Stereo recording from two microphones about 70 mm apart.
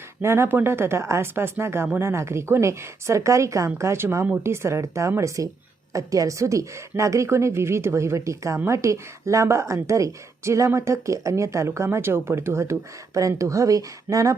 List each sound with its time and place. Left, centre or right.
0.2 s a woman's voice: right
5.9 s a woman's voice: right
13.1 s a woman's voice: right